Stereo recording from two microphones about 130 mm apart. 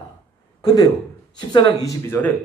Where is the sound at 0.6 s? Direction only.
30° left (ahead or behind).